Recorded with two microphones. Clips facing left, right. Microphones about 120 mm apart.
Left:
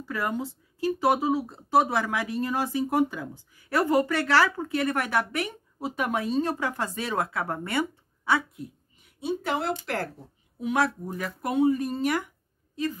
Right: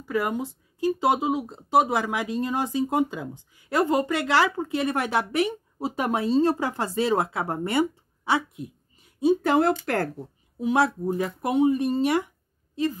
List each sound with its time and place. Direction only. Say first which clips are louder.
0.0 s speech: right 3 dB; 15° right (ahead or behind)
9.4 s speech: right 7 dB; 45° right (ahead or behind)
10.6 s speech: right 3 dB; 30° right (ahead or behind)